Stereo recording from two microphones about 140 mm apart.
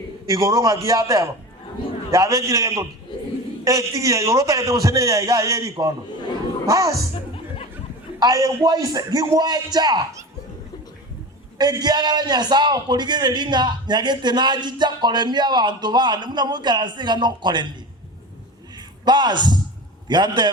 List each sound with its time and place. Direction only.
0.3 s a man's voice: 25° right (ahead or behind)
7.3 s music: 40° left (ahead or behind)
8.2 s a man's voice: 25° right (ahead or behind)
11.5 s a man's voice: 30° right (ahead or behind)
19.0 s a man's voice: 30° right (ahead or behind)